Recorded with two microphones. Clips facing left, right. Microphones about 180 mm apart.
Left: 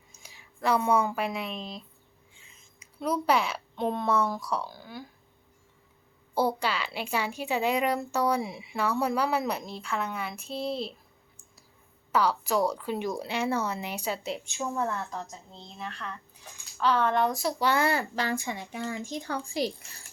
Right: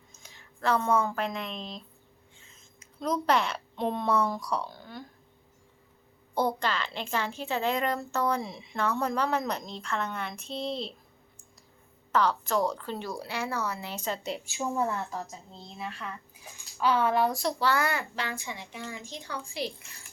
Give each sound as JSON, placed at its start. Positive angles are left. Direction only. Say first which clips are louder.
{"t": 0.1, "sound": "a woman's voice", "louder": "left 3 dB", "side_deg": 10}
{"t": 6.3, "sound": "a woman's voice", "louder": "left 1 dB", "side_deg": 10}
{"t": 12.1, "sound": "speech", "louder": "left 1 dB", "side_deg": 10}
{"t": 17.6, "sound": "speech", "louder": "left 3 dB", "side_deg": 20}